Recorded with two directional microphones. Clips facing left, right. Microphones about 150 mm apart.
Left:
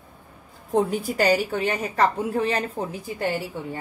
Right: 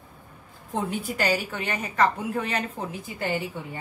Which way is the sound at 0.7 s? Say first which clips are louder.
Left 6 dB; 40° left (ahead or behind).